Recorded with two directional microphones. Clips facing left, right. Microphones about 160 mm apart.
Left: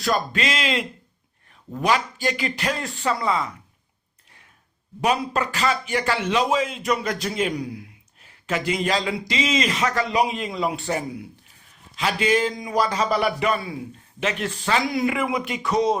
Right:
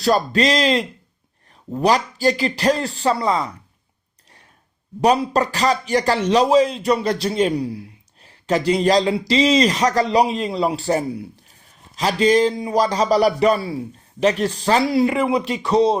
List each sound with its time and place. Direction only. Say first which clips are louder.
0.0 s speech: right 6 dB; 35° right (ahead or behind)
4.9 s speech: right 6 dB; 35° right (ahead or behind)